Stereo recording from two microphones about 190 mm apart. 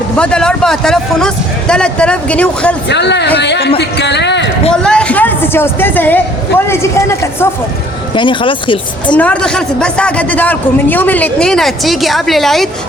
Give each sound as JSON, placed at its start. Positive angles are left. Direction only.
{"t": 0.2, "sound": "a man's voice", "side_deg": 5}
{"t": 2.9, "sound": "speech", "side_deg": 65}
{"t": 4.7, "sound": "a sound", "side_deg": 5}
{"t": 6.7, "sound": "speech", "side_deg": 15}
{"t": 8.1, "sound": "speech", "side_deg": 25}
{"t": 9.1, "sound": "a man's voice", "side_deg": 5}